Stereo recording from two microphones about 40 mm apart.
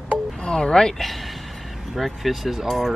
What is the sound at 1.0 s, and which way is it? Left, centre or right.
Speech, centre.